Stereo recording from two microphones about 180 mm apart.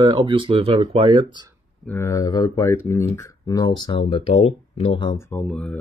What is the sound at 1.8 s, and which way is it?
Speech, 15° left (ahead or behind).